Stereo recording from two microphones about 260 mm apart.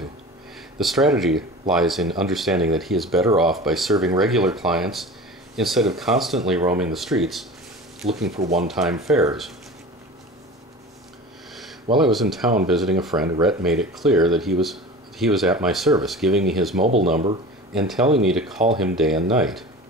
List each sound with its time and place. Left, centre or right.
0.7 s speech: centre
11.5 s a sound: centre
12.7 s speech: centre
16.8 s speech: right
17.7 s speech: centre